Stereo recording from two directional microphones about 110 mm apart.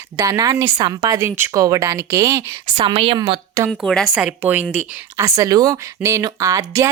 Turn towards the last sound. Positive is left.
turn(degrees=-30)  # may be behind; listen again after turning